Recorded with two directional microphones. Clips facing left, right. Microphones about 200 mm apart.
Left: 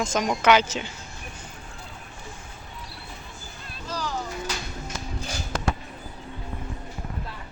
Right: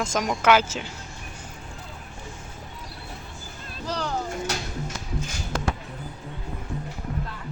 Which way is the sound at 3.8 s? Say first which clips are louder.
Right 3 dB; 70° right (ahead or behind).